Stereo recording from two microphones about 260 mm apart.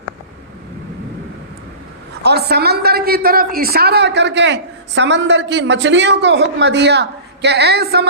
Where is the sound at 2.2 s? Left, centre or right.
Right.